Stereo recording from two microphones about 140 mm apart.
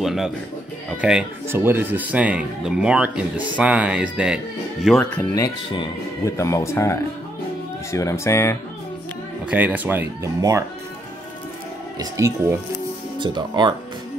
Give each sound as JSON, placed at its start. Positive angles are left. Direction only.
{"t": 0.0, "sound": "speech", "side_deg": 0}
{"t": 1.5, "sound": "speech", "side_deg": -15}
{"t": 5.3, "sound": "speech", "side_deg": 30}
{"t": 9.5, "sound": "speech", "side_deg": -10}
{"t": 12.0, "sound": "speech", "side_deg": -20}
{"t": 13.2, "sound": "speech", "side_deg": -35}